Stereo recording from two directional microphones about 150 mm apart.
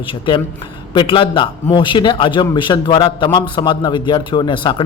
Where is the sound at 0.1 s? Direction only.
35° left (ahead or behind).